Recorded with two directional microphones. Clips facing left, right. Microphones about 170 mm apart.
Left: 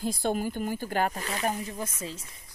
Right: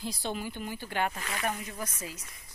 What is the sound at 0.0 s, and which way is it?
A woman's voice, 50° left (ahead or behind).